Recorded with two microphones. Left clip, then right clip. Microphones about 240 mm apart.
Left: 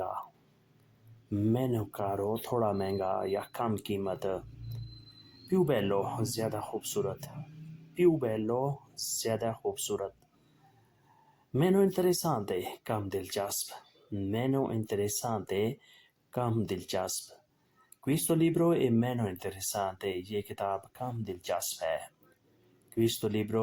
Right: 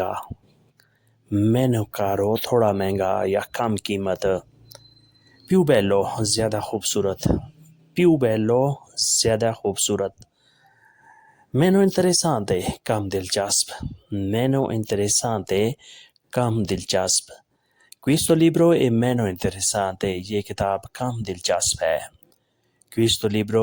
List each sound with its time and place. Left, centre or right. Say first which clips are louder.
0.0 s speech: right 10 dB; right
1.3 s speech: right 10 dB; right
5.5 s speech: right 11 dB; right
11.5 s speech: right 8 dB; right